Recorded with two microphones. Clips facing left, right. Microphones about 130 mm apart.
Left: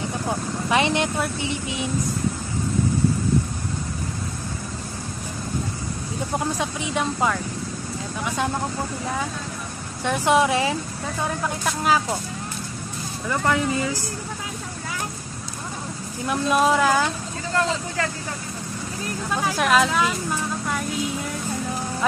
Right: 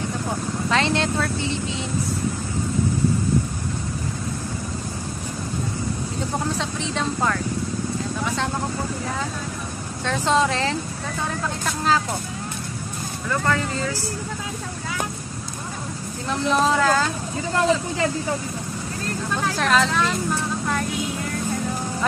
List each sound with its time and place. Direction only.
0.7 s speech: 15° left (ahead or behind)
6.5 s speech: 15° left (ahead or behind)
10.0 s speech: 15° left (ahead or behind)
13.3 s speech: 15° left (ahead or behind)
16.3 s speech: 10° left (ahead or behind)
17.6 s speech: 20° right (ahead or behind)
19.3 s speech: 10° left (ahead or behind)